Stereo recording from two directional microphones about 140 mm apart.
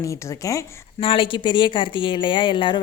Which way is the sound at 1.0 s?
40° left (ahead or behind).